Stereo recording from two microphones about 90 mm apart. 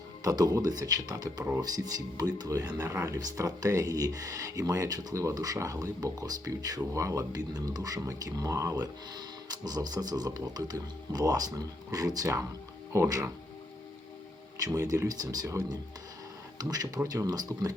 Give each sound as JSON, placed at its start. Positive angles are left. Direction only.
{"t": 0.3, "sound": "speech", "side_deg": -40}
{"t": 14.6, "sound": "speech", "side_deg": -40}
{"t": 16.6, "sound": "speech", "side_deg": -45}